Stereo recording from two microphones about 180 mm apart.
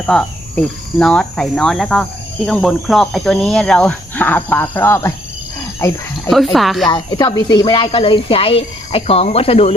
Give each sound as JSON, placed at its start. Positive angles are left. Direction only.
{"t": 0.0, "sound": "speech", "side_deg": 5}
{"t": 6.3, "sound": "speech", "side_deg": 0}
{"t": 6.8, "sound": "speech", "side_deg": 25}